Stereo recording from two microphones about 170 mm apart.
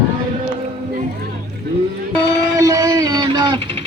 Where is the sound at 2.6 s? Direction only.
20° right (ahead or behind).